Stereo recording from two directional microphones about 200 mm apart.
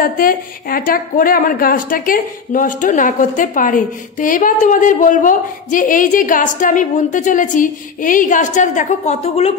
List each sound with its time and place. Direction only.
0.0 s a woman's voice: 45° left (ahead or behind)